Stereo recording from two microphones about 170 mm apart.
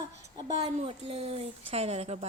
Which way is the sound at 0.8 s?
35° right (ahead or behind).